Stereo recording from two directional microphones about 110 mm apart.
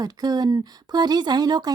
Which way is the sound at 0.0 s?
35° right (ahead or behind).